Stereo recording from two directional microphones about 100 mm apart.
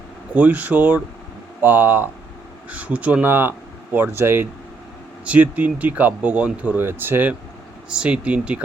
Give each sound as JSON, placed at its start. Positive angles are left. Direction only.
{"t": 0.3, "sound": "speech", "side_deg": -15}